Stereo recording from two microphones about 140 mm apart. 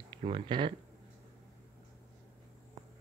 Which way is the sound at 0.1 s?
35° right (ahead or behind).